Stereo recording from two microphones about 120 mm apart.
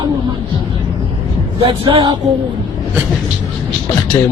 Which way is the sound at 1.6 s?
50° right (ahead or behind).